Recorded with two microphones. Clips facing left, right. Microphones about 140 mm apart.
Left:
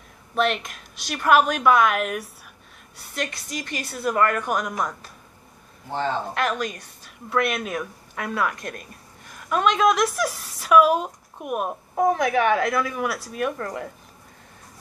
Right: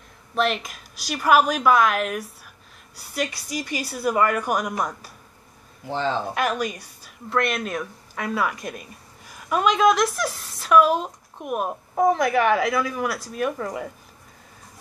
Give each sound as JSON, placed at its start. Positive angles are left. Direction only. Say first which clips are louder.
{"t": 0.3, "sound": "a woman's voice", "louder": "even", "side_deg": 0}
{"t": 5.9, "sound": "speech", "louder": "right 1 dB", "side_deg": -90}
{"t": 6.3, "sound": "a woman's voice", "louder": "right 1 dB", "side_deg": -5}